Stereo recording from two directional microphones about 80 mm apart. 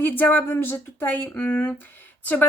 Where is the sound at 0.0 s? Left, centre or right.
Left.